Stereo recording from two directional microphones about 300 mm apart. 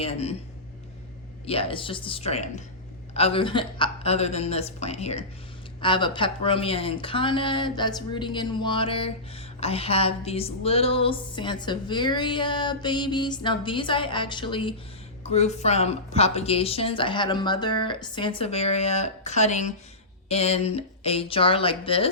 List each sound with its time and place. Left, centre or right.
0.0 s a woman's voice: centre
1.5 s a woman's voice: centre